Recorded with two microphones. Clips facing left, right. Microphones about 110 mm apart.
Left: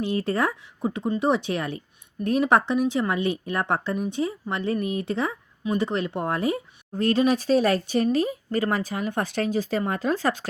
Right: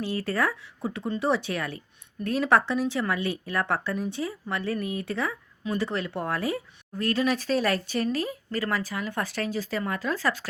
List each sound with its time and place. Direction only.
0.0 s a woman's voice: 20° left (ahead or behind)